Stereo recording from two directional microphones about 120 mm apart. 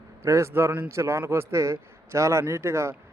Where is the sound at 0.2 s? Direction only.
25° right (ahead or behind).